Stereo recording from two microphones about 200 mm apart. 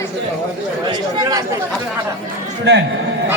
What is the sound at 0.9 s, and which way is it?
Speech, 20° right (ahead or behind).